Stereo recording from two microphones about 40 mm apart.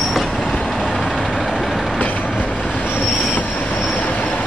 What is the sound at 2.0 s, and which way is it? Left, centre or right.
Train, left.